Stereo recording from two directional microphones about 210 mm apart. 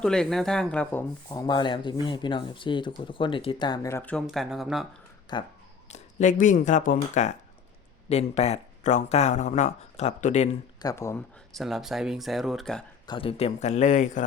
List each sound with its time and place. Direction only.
0.0 s speech: 5° left (ahead or behind)
1.3 s speech: 20° left (ahead or behind); by 4.9 s centre (ahead or behind)
5.3 s speech: 20° left (ahead or behind)
5.9 s speech: 35° left (ahead or behind)
10.8 s speech: 15° left (ahead or behind)
11.5 s speech: centre (ahead or behind)
13.1 s speech: 25° left (ahead or behind)